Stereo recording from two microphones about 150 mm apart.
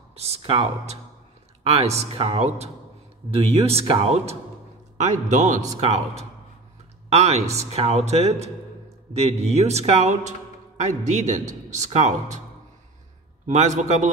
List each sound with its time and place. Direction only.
0.1 s speech: 45° right (ahead or behind)
4.9 s speech: 55° right (ahead or behind)
13.5 s speech: 50° right (ahead or behind)